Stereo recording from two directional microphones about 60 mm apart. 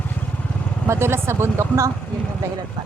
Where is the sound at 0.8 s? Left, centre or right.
Right.